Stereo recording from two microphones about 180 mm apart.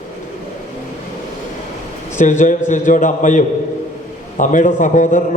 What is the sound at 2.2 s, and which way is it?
A man's voice, 45° left (ahead or behind).